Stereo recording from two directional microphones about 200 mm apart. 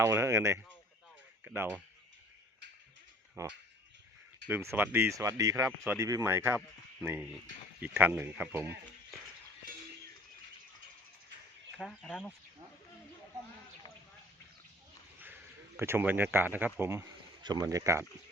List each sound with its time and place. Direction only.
0.0 s speech: 10° right (ahead or behind)
3.4 s speech: 15° right (ahead or behind)
11.8 s speech: centre (ahead or behind)
15.8 s speech: 10° right (ahead or behind)